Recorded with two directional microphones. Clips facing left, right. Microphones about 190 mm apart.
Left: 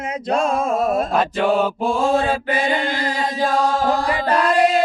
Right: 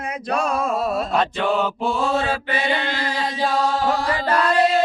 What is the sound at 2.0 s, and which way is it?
Mantra, 50° left (ahead or behind).